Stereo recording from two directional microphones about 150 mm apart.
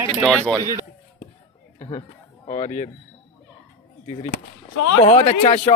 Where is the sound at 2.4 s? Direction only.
50° left (ahead or behind).